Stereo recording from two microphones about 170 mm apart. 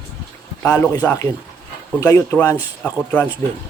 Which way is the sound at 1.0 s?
15° left (ahead or behind).